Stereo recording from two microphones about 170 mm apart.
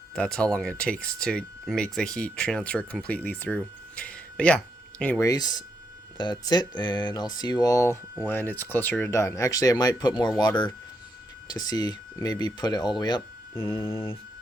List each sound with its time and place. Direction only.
0.2 s speech: 5° left (ahead or behind); by 13.2 s 25° left (ahead or behind)